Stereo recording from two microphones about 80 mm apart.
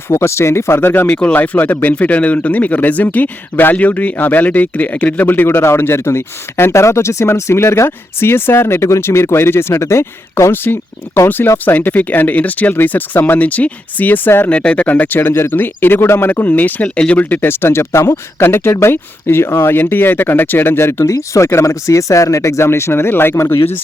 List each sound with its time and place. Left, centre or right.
0.1 s speech: left
1.1 s speech: centre
14.5 s speech: centre; by 23.7 s left